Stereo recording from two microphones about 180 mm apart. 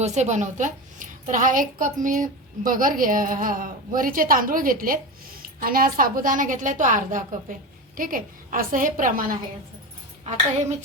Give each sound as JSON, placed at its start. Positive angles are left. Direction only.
{"t": 0.0, "sound": "a woman's voice", "side_deg": -40}